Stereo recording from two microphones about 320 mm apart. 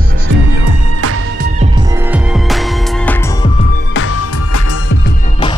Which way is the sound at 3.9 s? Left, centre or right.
Left.